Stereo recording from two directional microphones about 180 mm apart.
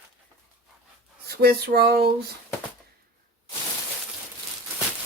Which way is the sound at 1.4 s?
60° right (ahead or behind).